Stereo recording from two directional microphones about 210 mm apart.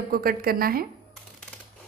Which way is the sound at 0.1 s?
45° right (ahead or behind).